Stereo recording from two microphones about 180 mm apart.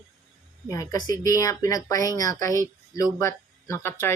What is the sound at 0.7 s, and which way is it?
Speech, 15° left (ahead or behind).